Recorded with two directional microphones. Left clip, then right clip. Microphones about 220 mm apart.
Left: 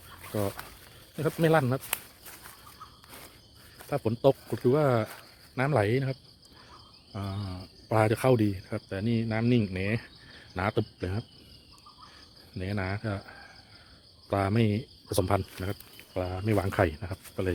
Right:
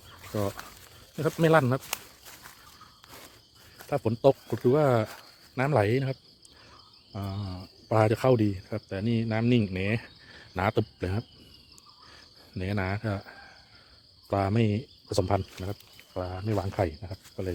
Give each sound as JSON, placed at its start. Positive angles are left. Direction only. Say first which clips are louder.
{"t": 0.2, "sound": "a sound", "louder": "right 1 dB", "side_deg": 0}
{"t": 1.1, "sound": "speech", "louder": "right 2 dB", "side_deg": -10}
{"t": 1.9, "sound": "walk", "louder": "even", "side_deg": -5}
{"t": 3.8, "sound": "speech", "louder": "right 1 dB", "side_deg": -10}
{"t": 12.5, "sound": "speech", "louder": "right 2 dB", "side_deg": -15}
{"t": 15.6, "sound": "snake", "louder": "left 2 dB", "side_deg": 10}
{"t": 16.5, "sound": "speech", "louder": "left 3 dB", "side_deg": 15}